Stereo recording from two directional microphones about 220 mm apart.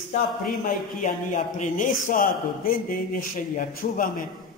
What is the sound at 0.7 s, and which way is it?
A man's voice, 35° left (ahead or behind).